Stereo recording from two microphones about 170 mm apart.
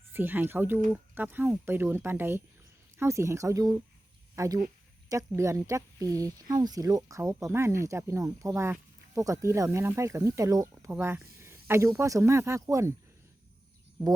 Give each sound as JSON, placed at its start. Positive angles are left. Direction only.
{"t": 0.1, "sound": "speech", "side_deg": -10}
{"t": 4.4, "sound": "a sound", "side_deg": -20}
{"t": 5.4, "sound": "speech", "side_deg": -20}